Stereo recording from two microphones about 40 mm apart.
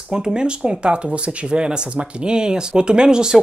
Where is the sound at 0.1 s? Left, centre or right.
Centre.